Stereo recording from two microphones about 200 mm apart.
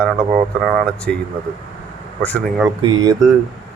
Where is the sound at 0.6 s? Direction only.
Centre (ahead or behind).